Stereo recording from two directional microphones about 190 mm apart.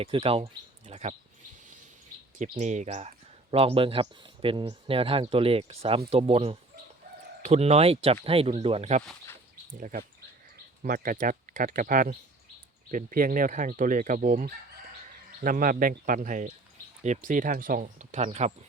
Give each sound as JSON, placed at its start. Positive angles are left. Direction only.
{"t": 0.0, "sound": "speech", "side_deg": -30}
{"t": 2.4, "sound": "speech", "side_deg": -40}
{"t": 9.7, "sound": "speech", "side_deg": -45}